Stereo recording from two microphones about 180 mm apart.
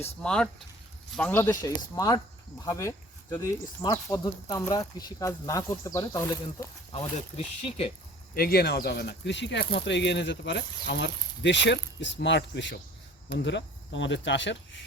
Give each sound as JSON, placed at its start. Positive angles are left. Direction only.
{"t": 0.0, "sound": "speech", "side_deg": 5}
{"t": 1.5, "sound": "speech", "side_deg": 20}
{"t": 6.9, "sound": "speech", "side_deg": 35}
{"t": 8.4, "sound": "speech", "side_deg": 60}